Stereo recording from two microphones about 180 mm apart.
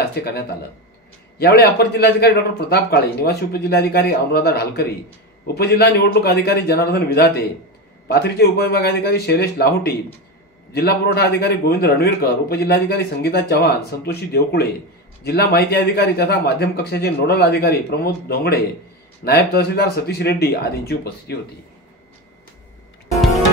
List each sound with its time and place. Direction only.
0.1 s a man's voice: 65° left (ahead or behind)